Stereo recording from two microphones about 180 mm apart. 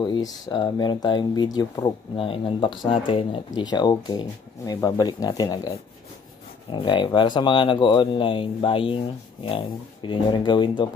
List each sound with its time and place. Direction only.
0.0 s speech: 25° left (ahead or behind)